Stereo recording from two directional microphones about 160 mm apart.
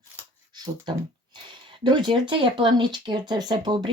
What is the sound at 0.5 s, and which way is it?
Speech, 25° right (ahead or behind).